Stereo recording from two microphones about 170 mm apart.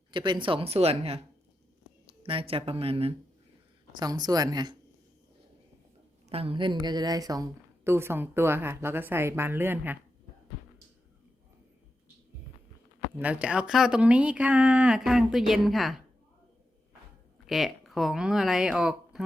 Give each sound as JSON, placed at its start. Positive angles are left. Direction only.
{"t": 0.1, "sound": "speech", "side_deg": -30}
{"t": 4.0, "sound": "a woman's voice", "side_deg": -20}
{"t": 6.2, "sound": "a woman's voice", "side_deg": -35}
{"t": 13.1, "sound": "speech", "side_deg": -10}
{"t": 17.4, "sound": "speech", "side_deg": 0}